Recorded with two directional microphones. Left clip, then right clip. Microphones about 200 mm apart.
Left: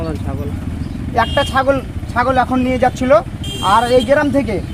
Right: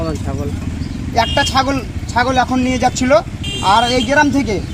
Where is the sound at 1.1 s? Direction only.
Centre (ahead or behind).